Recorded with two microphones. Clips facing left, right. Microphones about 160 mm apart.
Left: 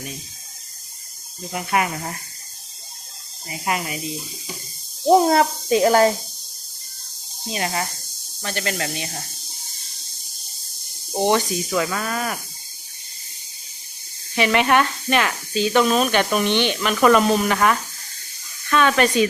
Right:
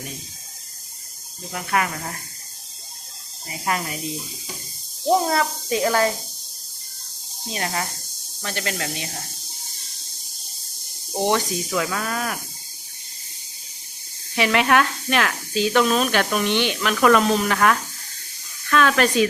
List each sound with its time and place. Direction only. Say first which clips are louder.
1.5 s speech: left 2 dB; 20° left (ahead or behind)
3.7 s speech: left 1 dB; 10° left (ahead or behind)
5.0 s a child's voice: left 5 dB; 30° left (ahead or behind)
7.5 s speech: left 2 dB; 5° left (ahead or behind)
11.1 s speech: left 2 dB; 5° left (ahead or behind)
14.3 s speech: left 1 dB; centre (ahead or behind)